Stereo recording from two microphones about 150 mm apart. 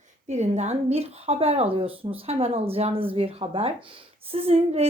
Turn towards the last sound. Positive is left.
turn(degrees=-40)  # may be behind; listen again after turning